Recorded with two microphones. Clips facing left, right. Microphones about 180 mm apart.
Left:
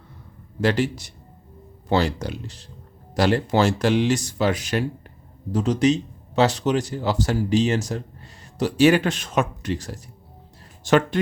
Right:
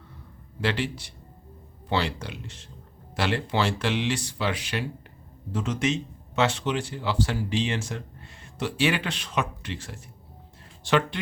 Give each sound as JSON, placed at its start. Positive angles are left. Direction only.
{"t": 0.6, "sound": "speech", "side_deg": 45}